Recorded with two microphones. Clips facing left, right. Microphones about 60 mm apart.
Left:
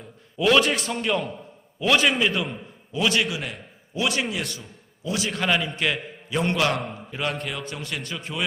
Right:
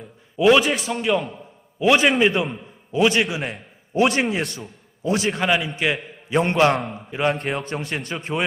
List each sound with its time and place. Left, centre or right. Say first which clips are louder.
0.3 s a man's voice: right 4 dB; centre
1.8 s a man's voice: right 4 dB; right
5.4 s a man's voice: right 3 dB; centre
6.3 s a man's voice: right 5 dB; right
7.4 s a man's voice: right 6 dB; right